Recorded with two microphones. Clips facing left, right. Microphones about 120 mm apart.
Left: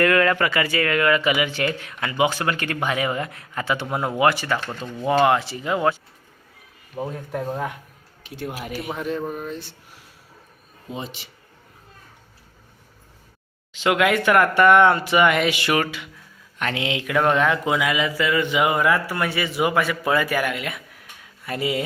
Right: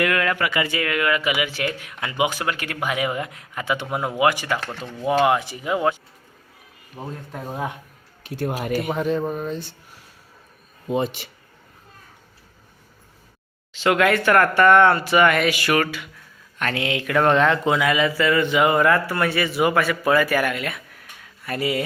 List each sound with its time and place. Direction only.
0.0 s speech: 5° right (ahead or behind)
0.5 s speech: 20° right (ahead or behind)
0.9 s speech: 10° right (ahead or behind)
6.9 s speech: centre (ahead or behind)
8.2 s speech: 45° right (ahead or behind)
8.9 s speech: centre (ahead or behind)
10.8 s speech: 55° right (ahead or behind)
13.7 s speech: 15° left (ahead or behind)